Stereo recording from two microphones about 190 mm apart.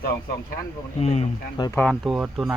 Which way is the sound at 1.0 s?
30° left (ahead or behind).